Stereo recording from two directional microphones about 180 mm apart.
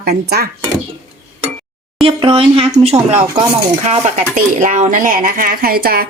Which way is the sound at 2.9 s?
20° right (ahead or behind).